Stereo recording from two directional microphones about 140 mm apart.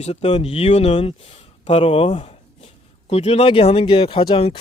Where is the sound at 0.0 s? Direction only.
50° left (ahead or behind).